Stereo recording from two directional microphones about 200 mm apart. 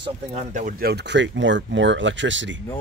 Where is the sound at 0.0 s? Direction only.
35° right (ahead or behind); by 2.6 s 65° right (ahead or behind).